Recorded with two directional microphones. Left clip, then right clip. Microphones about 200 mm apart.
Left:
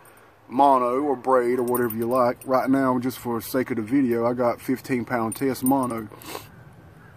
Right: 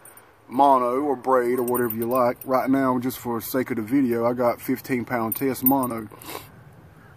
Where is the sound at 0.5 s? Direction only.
5° right (ahead or behind).